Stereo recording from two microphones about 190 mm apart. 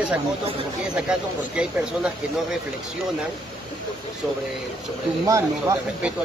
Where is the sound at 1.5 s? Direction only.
5° right (ahead or behind).